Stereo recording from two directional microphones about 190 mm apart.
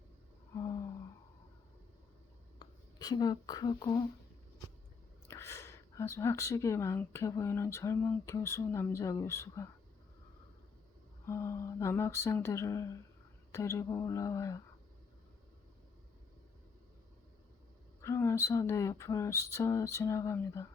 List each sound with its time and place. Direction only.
0.5 s a sound: 15° left (ahead or behind)
2.6 s speech: 20° left (ahead or behind)
5.3 s speech: 15° left (ahead or behind)
11.3 s speech: 15° left (ahead or behind)
18.0 s speech: 15° left (ahead or behind)